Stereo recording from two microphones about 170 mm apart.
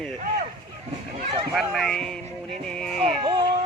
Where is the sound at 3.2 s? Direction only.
30° right (ahead or behind).